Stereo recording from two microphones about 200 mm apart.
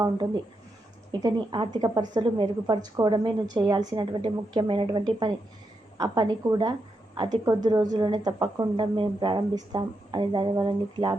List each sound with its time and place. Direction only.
1.2 s a woman's voice: 25° right (ahead or behind)